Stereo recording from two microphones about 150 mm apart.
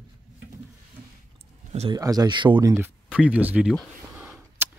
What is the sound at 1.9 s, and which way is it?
Speech, 25° right (ahead or behind).